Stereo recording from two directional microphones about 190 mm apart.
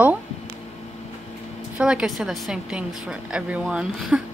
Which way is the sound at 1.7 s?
5° right (ahead or behind).